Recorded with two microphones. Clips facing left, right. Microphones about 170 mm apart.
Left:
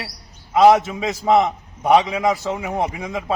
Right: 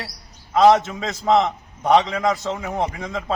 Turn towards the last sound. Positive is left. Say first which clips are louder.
# left 1 dB
turn(degrees=5)  # may be behind; listen again after turning